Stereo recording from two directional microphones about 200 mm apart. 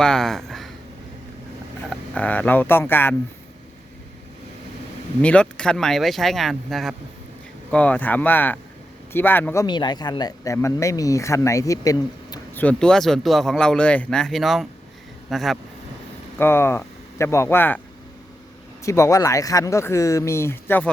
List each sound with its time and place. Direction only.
0.0 s speech: 5° left (ahead or behind)
1.9 s speech: 5° left (ahead or behind)
5.2 s speech: 5° left (ahead or behind)
12.5 s speech: 5° left (ahead or behind)
16.4 s speech: 10° left (ahead or behind)
18.9 s speech: 15° left (ahead or behind)